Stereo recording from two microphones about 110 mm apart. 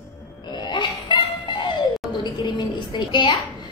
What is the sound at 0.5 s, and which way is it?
Wail, 45° left (ahead or behind).